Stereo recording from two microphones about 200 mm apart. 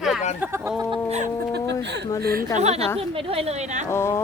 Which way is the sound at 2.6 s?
35° right (ahead or behind).